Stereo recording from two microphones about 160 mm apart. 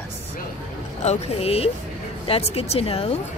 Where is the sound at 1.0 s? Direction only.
40° left (ahead or behind).